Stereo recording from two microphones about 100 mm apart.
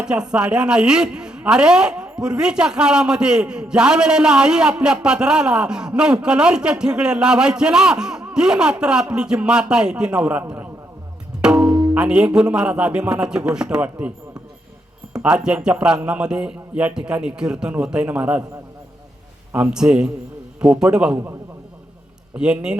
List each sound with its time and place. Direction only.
0.0 s a man's voice: 10° right (ahead or behind)
11.6 s music: 40° right (ahead or behind)
11.9 s a man's voice: 10° right (ahead or behind)
15.1 s a man's voice: 10° right (ahead or behind)
19.5 s a man's voice: 10° right (ahead or behind)
22.4 s a man's voice: 10° right (ahead or behind)